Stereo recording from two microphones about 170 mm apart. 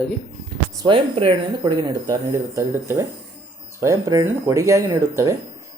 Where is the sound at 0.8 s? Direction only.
30° right (ahead or behind).